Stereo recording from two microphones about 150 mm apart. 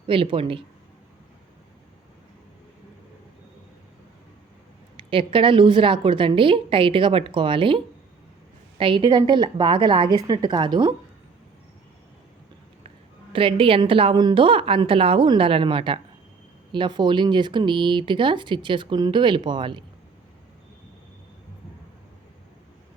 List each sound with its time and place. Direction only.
0.1 s speech: 35° right (ahead or behind)
5.1 s speech: 35° right (ahead or behind)
8.8 s a woman's voice: 35° right (ahead or behind)
13.3 s speech: 35° right (ahead or behind)